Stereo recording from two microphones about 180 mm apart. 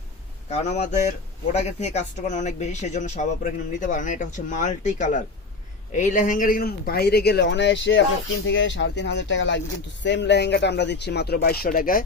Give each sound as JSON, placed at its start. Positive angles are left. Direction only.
{"t": 0.5, "sound": "speech", "side_deg": 40}